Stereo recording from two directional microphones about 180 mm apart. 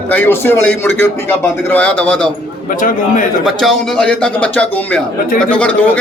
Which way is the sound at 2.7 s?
50° left (ahead or behind).